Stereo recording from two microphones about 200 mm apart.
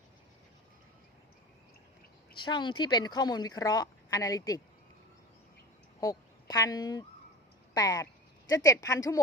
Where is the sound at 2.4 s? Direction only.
25° left (ahead or behind).